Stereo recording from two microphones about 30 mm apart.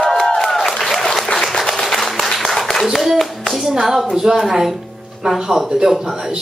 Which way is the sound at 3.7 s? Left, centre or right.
Centre.